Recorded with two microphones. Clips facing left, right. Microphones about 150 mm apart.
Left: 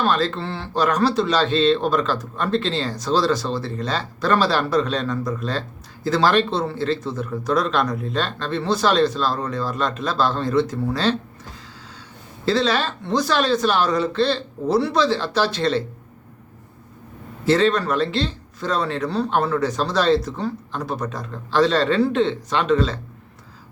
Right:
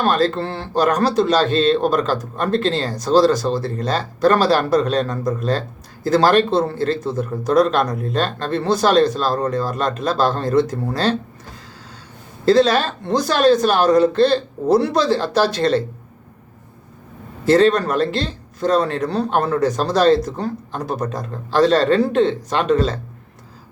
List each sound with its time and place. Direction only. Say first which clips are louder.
0.0 s speech: right 3 dB; 45° right (ahead or behind)
12.5 s speech: right 6 dB; 45° right (ahead or behind)
17.4 s speech: right 4 dB; 45° right (ahead or behind)